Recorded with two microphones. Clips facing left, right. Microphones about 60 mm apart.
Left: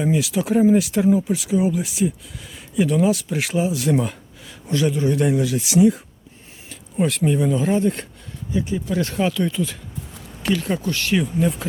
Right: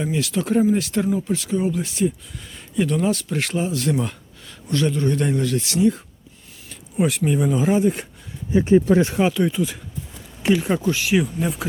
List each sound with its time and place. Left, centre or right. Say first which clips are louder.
0.0 s a man's voice: left 3 dB; centre
6.7 s a sound: even; centre
7.3 s speech: left 1 dB; centre
8.5 s speech: right 9 dB; right
9.0 s speech: right 3 dB; centre